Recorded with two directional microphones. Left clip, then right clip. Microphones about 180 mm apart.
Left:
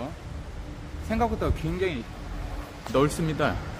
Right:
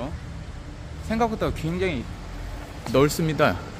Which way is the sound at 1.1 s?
35° right (ahead or behind).